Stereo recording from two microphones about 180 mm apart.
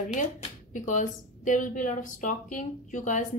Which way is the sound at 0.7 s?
45° left (ahead or behind).